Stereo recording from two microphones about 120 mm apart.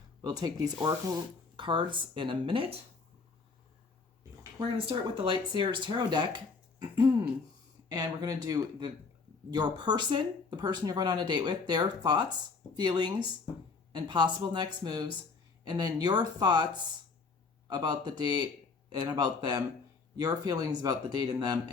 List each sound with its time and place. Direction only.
0.2 s speech: 35° right (ahead or behind); by 2.8 s 50° right (ahead or behind)
4.9 s speech: 45° right (ahead or behind)
7.9 s speech: 35° right (ahead or behind)